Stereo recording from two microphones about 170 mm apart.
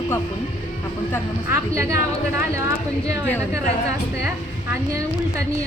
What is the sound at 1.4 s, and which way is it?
Speech, 15° right (ahead or behind).